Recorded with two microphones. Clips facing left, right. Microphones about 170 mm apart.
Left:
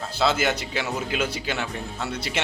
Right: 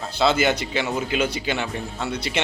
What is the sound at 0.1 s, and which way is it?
A man's voice, centre (ahead or behind).